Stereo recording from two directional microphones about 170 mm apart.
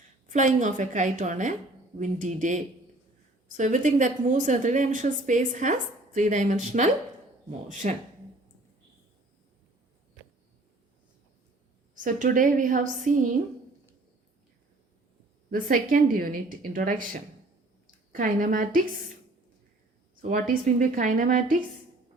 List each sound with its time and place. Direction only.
0.3 s a woman's voice: 45° right (ahead or behind)
3.6 s a woman's voice: 45° right (ahead or behind)
11.9 s a woman's voice: 50° right (ahead or behind)
15.4 s a woman's voice: 50° right (ahead or behind)
20.2 s a woman's voice: 50° right (ahead or behind)